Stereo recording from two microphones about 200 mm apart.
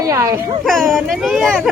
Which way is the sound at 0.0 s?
15° right (ahead or behind).